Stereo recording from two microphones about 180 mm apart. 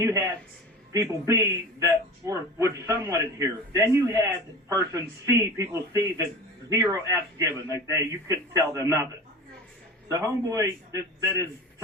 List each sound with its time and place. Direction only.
0.0 s music: 15° right (ahead or behind)
0.9 s a man's voice: 20° right (ahead or behind)
10.1 s a man's voice: 20° right (ahead or behind)